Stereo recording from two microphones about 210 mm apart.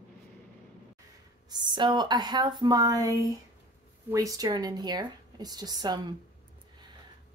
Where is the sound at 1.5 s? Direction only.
20° right (ahead or behind).